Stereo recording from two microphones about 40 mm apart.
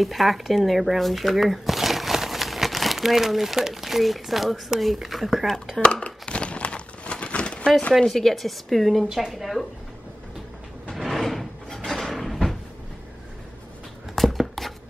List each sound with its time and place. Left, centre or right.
0.0 s a woman's voice: centre
5.8 s speech: centre
6.0 s crumpling: left
8.1 s a woman's voice: centre
10.9 s cupboard open or close: centre
14.1 s a sound: centre